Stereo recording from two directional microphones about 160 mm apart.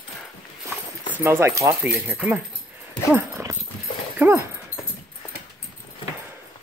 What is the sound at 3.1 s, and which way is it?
Dog, 15° right (ahead or behind).